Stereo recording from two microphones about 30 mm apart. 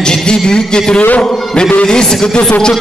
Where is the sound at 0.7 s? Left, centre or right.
Left.